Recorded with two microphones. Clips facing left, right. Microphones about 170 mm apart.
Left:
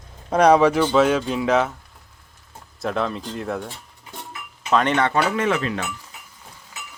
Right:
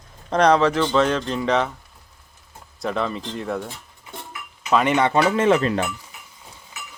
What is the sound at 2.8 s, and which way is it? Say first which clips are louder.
Speech: even; centre (ahead or behind).